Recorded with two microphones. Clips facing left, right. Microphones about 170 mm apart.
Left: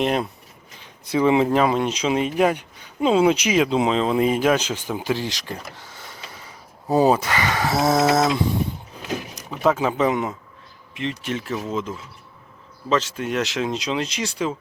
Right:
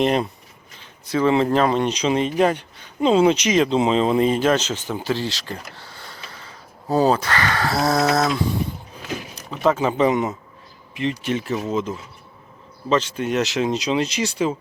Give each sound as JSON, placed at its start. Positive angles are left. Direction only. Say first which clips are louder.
{"t": 0.0, "sound": "speech", "louder": "right 2 dB", "side_deg": 0}
{"t": 1.1, "sound": "speech", "louder": "even", "side_deg": 10}
{"t": 6.1, "sound": "mechanisms", "louder": "even", "side_deg": 15}
{"t": 6.9, "sound": "speech", "louder": "left 1 dB", "side_deg": 20}
{"t": 9.5, "sound": "speech", "louder": "right 1 dB", "side_deg": 0}